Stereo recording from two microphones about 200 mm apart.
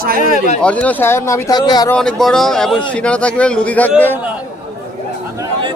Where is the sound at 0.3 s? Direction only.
35° left (ahead or behind).